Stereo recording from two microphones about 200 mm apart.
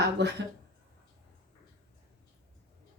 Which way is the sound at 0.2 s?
60° right (ahead or behind).